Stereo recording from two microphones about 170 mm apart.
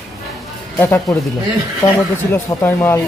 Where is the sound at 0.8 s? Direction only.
10° left (ahead or behind).